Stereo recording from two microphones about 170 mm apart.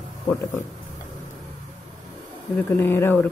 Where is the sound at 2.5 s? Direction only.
15° left (ahead or behind).